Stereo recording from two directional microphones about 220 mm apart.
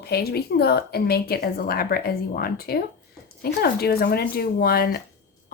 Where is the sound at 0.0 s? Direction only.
45° left (ahead or behind).